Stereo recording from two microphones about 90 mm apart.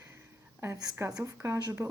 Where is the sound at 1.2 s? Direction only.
30° right (ahead or behind).